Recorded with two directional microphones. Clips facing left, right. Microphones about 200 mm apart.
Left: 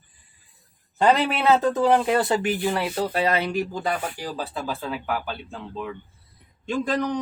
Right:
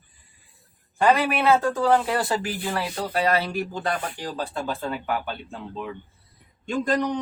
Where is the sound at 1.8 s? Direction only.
20° left (ahead or behind).